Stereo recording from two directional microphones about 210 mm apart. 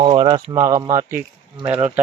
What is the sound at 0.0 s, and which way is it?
Speech, 20° right (ahead or behind).